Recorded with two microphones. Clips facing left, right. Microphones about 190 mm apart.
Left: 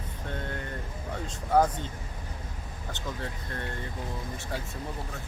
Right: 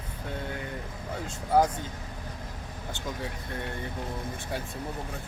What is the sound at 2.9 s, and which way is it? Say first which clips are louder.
Speech: right 1 dB; 10° right (ahead or behind).